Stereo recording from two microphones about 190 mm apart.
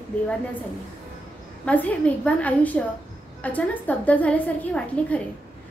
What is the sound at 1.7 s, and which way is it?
A woman's voice, 10° left (ahead or behind).